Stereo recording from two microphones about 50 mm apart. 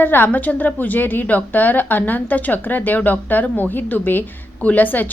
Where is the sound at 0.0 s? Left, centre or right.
Left.